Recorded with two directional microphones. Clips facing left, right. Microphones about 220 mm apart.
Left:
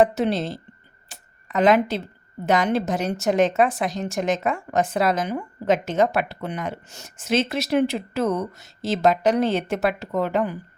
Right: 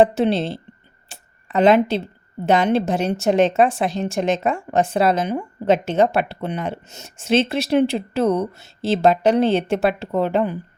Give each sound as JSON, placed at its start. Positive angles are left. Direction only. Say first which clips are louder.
{"t": 0.0, "sound": "speech", "louder": "right 3 dB", "side_deg": -30}
{"t": 1.1, "sound": "a sound", "louder": "right 3 dB", "side_deg": -30}
{"t": 2.5, "sound": "speech", "louder": "right 3 dB", "side_deg": -25}